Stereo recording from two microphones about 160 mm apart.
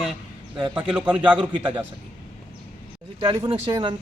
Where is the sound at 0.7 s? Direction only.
5° right (ahead or behind).